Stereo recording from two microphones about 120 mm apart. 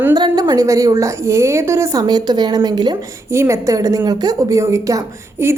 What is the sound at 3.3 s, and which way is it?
A woman's voice, 25° right (ahead or behind).